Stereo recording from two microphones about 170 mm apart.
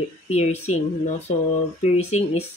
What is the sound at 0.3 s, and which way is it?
Speech, 40° left (ahead or behind).